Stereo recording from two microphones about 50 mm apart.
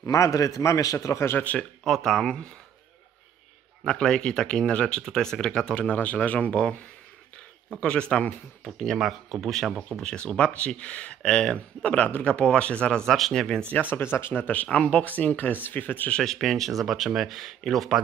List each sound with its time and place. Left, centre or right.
0.0 s a man's voice: left
2.0 s speech: centre
3.8 s speech: centre
7.8 s speech: centre
9.5 s speech: centre
10.0 s speech: centre
13.0 s speech: centre
13.7 s speech: left
16.1 s speech: centre